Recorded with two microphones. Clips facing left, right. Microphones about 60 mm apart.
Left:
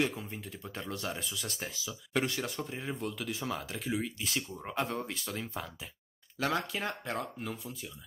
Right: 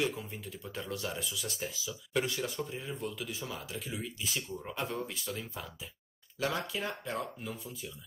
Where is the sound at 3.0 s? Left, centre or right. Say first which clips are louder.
Left 2 dB; left.